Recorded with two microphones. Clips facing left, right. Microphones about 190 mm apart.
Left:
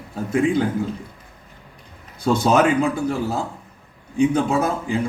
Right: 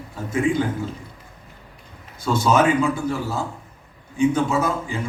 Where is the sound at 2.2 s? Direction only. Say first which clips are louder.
Left 2 dB; 60° left (ahead or behind).